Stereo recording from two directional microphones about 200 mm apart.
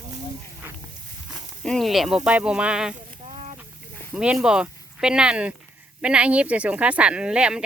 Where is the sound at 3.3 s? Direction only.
30° right (ahead or behind).